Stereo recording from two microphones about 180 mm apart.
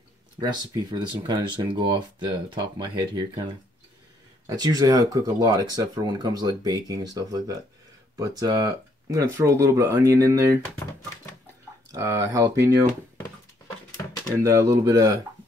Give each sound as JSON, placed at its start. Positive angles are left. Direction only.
{"t": 0.4, "sound": "speech", "side_deg": -25}
{"t": 4.5, "sound": "speech", "side_deg": -20}
{"t": 11.9, "sound": "speech", "side_deg": -15}
{"t": 14.4, "sound": "speech", "side_deg": -15}